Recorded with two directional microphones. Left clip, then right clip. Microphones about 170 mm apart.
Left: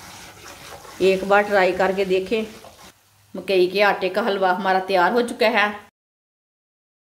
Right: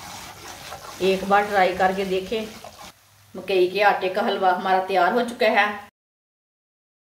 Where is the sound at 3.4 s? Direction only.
55° left (ahead or behind).